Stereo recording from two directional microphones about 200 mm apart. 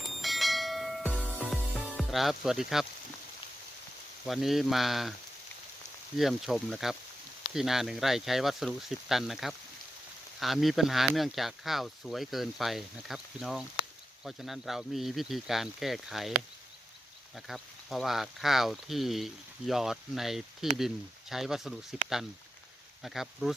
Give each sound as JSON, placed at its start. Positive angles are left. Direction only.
{"t": 0.2, "sound": "bell", "side_deg": 0}
{"t": 1.3, "sound": "music", "side_deg": -5}
{"t": 4.3, "sound": "speech", "side_deg": 0}
{"t": 6.1, "sound": "speech", "side_deg": 0}
{"t": 17.3, "sound": "speech", "side_deg": 0}